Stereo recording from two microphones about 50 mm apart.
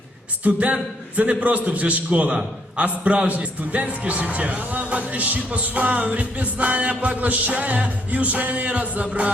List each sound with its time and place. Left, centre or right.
0.4 s a man's voice: right